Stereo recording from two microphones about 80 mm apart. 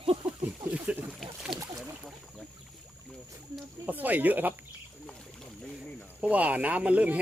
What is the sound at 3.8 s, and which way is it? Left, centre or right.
Speech, right.